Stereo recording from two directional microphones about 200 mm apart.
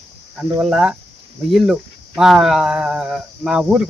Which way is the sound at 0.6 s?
5° right (ahead or behind).